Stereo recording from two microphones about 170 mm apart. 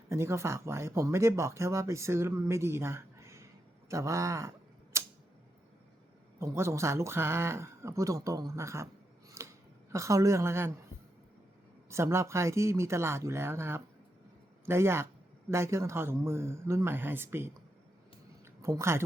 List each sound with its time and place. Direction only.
0.1 s speech: 15° right (ahead or behind)
4.9 s tick-tock: 15° right (ahead or behind)
6.4 s speech: 15° right (ahead or behind)
9.3 s a sound: 15° right (ahead or behind)
11.9 s speech: 15° right (ahead or behind)
18.6 s speech: 15° right (ahead or behind)